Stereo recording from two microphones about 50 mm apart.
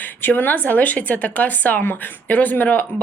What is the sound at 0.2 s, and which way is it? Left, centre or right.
Speech, left.